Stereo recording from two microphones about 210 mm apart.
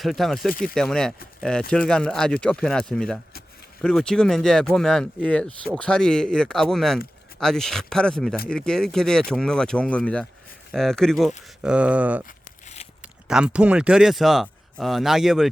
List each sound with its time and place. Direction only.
0.0 s speech: centre (ahead or behind)
12.2 s crumpling: 30° left (ahead or behind)
13.0 s speech: 5° right (ahead or behind)